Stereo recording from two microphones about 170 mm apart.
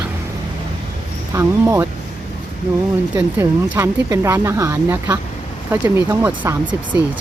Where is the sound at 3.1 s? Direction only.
15° right (ahead or behind).